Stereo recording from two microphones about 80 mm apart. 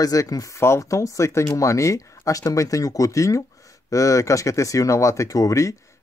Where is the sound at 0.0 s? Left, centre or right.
Left.